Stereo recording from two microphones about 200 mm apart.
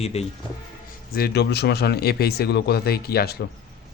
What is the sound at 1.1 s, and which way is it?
Speech, 50° left (ahead or behind).